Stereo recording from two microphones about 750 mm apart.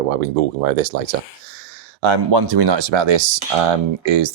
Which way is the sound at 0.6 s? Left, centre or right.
Right.